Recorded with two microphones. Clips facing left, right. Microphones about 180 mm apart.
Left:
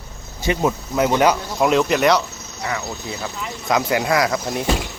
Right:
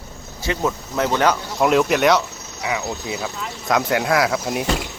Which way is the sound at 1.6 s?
Centre (ahead or behind).